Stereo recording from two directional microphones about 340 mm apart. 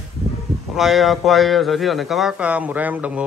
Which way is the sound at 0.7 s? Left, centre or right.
Centre.